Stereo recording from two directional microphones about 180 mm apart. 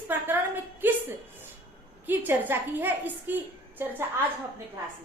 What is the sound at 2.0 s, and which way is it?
A woman's voice, 10° right (ahead or behind).